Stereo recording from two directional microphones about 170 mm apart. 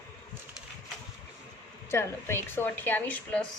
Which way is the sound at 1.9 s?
15° left (ahead or behind).